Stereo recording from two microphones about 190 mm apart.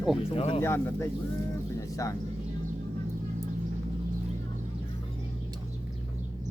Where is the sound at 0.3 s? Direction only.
30° left (ahead or behind).